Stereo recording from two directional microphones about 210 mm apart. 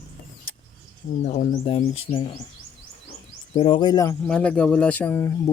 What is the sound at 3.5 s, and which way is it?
Speech, 25° left (ahead or behind).